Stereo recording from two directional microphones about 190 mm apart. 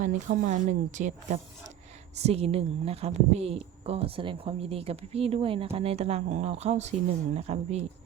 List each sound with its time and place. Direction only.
0.0 s a woman's voice: 40° right (ahead or behind)